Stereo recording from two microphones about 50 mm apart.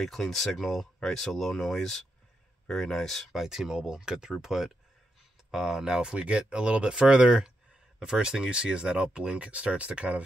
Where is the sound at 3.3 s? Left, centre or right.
Centre.